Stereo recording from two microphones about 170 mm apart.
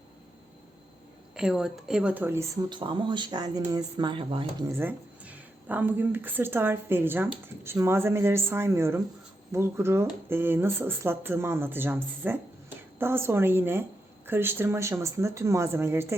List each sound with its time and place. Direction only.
1.4 s a woman's voice: 5° right (ahead or behind)
2.6 s speech: 30° right (ahead or behind)
4.8 s speech: 10° right (ahead or behind)